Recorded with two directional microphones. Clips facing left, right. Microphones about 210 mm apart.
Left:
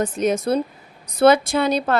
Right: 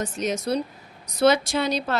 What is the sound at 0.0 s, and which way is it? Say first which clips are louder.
Speech: left 6 dB; 55° left (ahead or behind).